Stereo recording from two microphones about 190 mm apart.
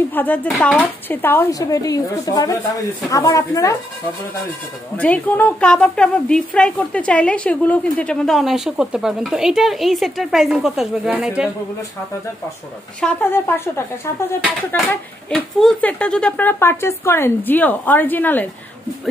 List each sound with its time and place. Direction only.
0.1 s speech: 10° left (ahead or behind)
4.9 s a woman's voice: 10° left (ahead or behind)
13.0 s speech: 10° left (ahead or behind)